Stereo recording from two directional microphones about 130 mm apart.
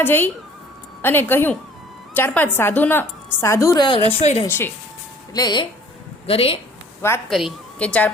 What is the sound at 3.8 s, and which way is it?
Speech, 40° left (ahead or behind).